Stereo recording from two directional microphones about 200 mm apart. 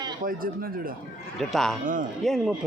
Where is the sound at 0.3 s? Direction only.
45° right (ahead or behind).